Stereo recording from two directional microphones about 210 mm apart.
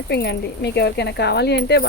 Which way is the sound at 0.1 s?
50° left (ahead or behind).